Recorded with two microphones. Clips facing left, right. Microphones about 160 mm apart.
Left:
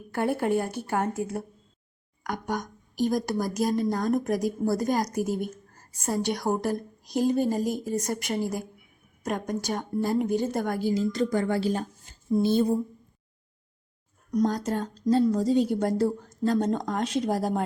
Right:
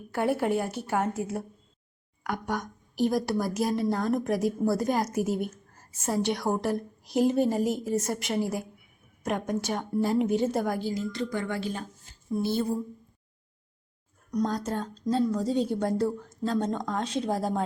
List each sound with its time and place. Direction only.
0.1 s a woman's voice: centre (ahead or behind)
11.1 s speech: 45° left (ahead or behind)
12.3 s a sound: 20° left (ahead or behind)
14.7 s a woman's voice: 5° left (ahead or behind)